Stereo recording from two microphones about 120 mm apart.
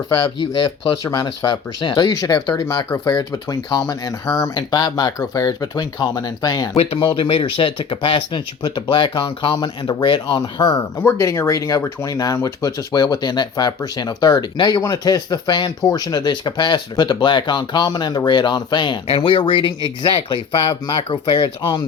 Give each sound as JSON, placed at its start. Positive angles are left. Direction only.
{"t": 1.5, "sound": "speech", "side_deg": 40}
{"t": 6.7, "sound": "speech", "side_deg": 45}